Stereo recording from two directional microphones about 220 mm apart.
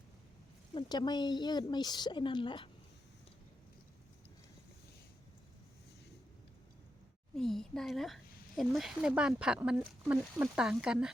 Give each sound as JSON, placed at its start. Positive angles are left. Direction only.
{"t": 0.7, "sound": "speech", "side_deg": 20}
{"t": 7.3, "sound": "speech", "side_deg": 0}